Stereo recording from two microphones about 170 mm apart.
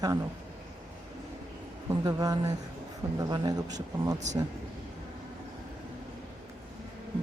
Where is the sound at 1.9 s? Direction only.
20° right (ahead or behind).